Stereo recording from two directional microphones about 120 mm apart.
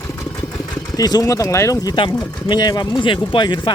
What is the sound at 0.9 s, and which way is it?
Speech, 30° left (ahead or behind).